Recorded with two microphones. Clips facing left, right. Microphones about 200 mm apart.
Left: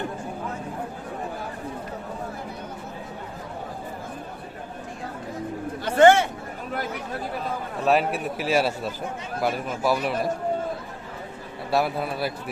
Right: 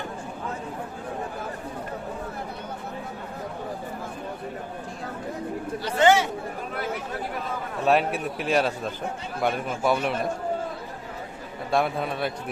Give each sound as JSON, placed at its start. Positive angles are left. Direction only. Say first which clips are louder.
{"t": 5.8, "sound": "chatter", "louder": "left 4 dB", "side_deg": 55}
{"t": 7.9, "sound": "a man's voice", "louder": "even", "side_deg": 0}
{"t": 11.7, "sound": "a man's voice", "louder": "even", "side_deg": 5}